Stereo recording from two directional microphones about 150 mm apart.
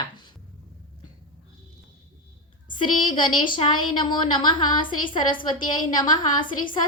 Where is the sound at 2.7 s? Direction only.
30° left (ahead or behind).